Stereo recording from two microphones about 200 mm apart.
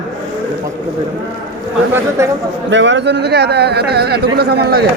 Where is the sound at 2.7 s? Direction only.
65° right (ahead or behind).